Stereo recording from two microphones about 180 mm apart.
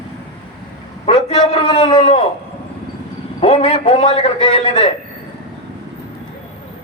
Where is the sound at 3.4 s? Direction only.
35° left (ahead or behind).